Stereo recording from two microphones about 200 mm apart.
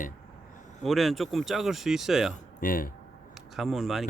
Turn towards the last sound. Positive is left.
turn(degrees=0)  # may be behind; listen again after turning